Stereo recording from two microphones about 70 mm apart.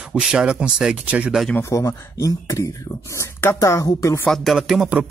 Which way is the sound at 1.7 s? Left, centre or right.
Left.